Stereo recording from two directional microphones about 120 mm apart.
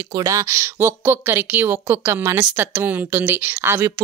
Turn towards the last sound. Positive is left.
turn(degrees=-20)  # may be behind; listen again after turning